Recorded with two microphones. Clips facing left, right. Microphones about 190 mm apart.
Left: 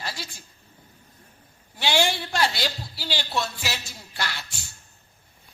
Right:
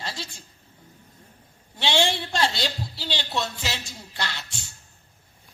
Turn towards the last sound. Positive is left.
turn(degrees=-25)  # may be behind; listen again after turning